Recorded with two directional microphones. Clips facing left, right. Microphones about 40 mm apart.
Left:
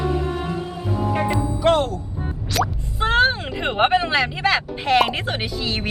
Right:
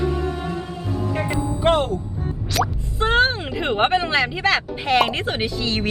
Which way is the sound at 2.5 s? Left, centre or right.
Centre.